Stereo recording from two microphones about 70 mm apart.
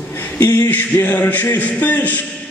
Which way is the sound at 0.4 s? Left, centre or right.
Left.